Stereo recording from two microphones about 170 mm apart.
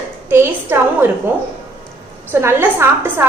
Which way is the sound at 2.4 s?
15° right (ahead or behind).